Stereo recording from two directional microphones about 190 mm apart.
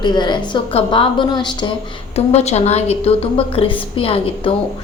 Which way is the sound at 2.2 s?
35° left (ahead or behind).